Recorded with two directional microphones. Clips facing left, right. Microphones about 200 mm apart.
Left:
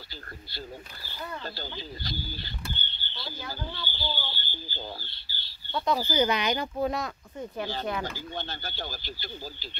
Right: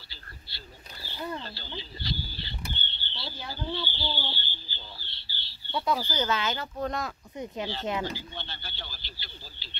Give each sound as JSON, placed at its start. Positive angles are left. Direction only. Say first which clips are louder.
{"t": 1.4, "sound": "speech", "louder": "left 3 dB", "side_deg": 45}
{"t": 5.7, "sound": "speech", "louder": "left 1 dB", "side_deg": -10}
{"t": 5.9, "sound": "speech", "louder": "left 4 dB", "side_deg": 10}
{"t": 7.3, "sound": "speech", "louder": "left 1 dB", "side_deg": -15}
{"t": 8.4, "sound": "speech", "louder": "left 6 dB", "side_deg": 45}